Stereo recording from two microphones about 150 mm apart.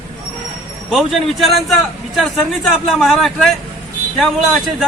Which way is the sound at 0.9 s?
Centre (ahead or behind).